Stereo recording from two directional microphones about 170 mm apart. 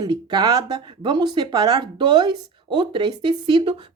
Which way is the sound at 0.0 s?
25° right (ahead or behind).